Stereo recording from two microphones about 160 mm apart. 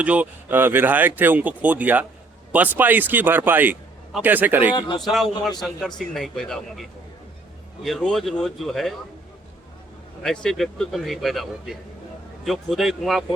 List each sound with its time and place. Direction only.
0.0 s a man's voice: 10° right (ahead or behind)
4.9 s a man's voice: centre (ahead or behind)
7.9 s a man's voice: centre (ahead or behind)
10.2 s a man's voice: centre (ahead or behind)